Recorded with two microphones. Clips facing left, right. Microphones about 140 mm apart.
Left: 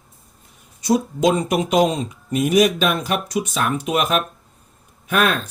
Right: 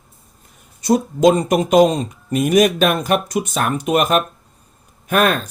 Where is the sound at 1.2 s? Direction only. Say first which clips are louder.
Right 4 dB; 45° right (ahead or behind).